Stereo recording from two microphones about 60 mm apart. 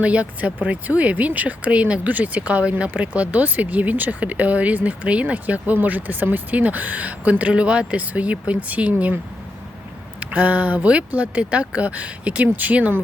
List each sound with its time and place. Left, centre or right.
0.0 s speech: right
10.2 s speech: right